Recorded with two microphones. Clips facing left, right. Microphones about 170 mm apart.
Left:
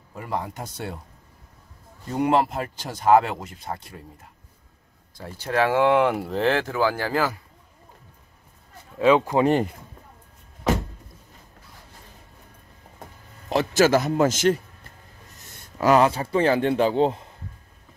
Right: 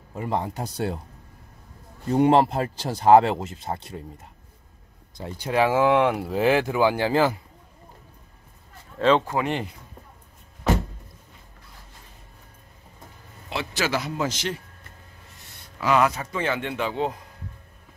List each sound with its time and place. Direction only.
0.1 s speech: 25° right (ahead or behind)
2.0 s speech: 30° right (ahead or behind)
5.1 s speech: 15° right (ahead or behind)
5.7 s speech: centre (ahead or behind); by 7.3 s 25° right (ahead or behind)
8.9 s speech: 10° left (ahead or behind)
9.4 s speech: 40° left (ahead or behind)
13.5 s a man's voice: 45° left (ahead or behind)
16.0 s speech: 30° left (ahead or behind)